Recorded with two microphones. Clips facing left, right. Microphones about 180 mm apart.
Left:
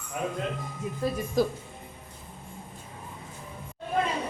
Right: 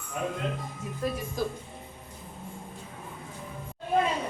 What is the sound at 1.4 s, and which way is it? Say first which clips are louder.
Speech: left 7 dB; 80° left.